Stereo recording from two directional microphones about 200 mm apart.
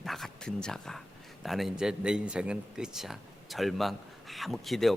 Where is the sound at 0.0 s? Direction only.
Centre (ahead or behind).